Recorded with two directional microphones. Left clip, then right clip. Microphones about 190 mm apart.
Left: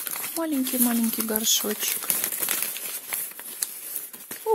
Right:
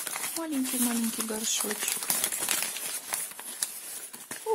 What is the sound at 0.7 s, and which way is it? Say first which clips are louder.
Speech: left 5 dB; 45° left (ahead or behind).